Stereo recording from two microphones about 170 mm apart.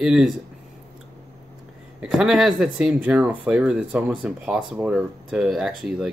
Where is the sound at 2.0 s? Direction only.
5° right (ahead or behind).